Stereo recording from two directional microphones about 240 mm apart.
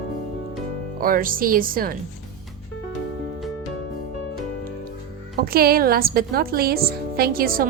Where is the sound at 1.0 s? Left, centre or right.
Right.